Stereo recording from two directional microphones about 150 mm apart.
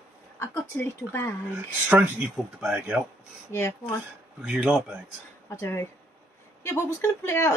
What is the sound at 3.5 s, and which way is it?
Speech, 15° left (ahead or behind).